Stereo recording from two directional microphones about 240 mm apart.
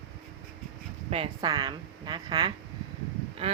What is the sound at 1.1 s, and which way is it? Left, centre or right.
Speech, right.